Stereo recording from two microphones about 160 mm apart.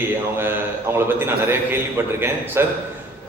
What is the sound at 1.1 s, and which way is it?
A man's voice, 15° right (ahead or behind).